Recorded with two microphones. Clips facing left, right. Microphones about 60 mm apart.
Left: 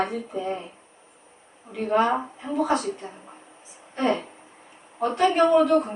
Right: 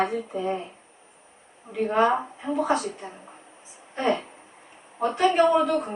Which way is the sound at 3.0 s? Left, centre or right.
Centre.